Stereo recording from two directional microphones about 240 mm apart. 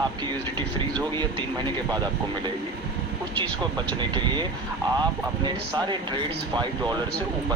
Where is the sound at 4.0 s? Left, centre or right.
Centre.